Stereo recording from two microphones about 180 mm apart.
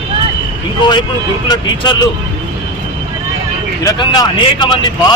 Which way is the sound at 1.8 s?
25° left (ahead or behind).